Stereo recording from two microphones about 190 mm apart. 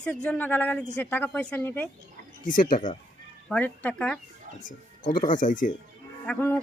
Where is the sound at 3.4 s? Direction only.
10° left (ahead or behind).